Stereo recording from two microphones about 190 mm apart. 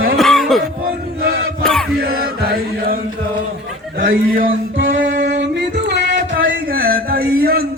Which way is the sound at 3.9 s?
45° right (ahead or behind).